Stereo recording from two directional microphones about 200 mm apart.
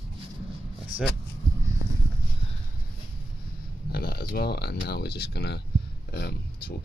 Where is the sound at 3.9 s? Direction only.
50° left (ahead or behind).